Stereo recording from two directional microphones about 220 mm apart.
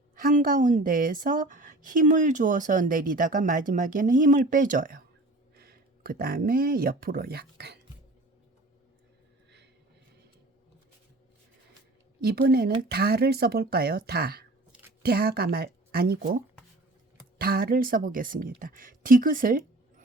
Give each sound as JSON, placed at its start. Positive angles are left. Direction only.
{"t": 0.2, "sound": "a woman's voice", "side_deg": -35}
{"t": 12.2, "sound": "a woman's voice", "side_deg": -45}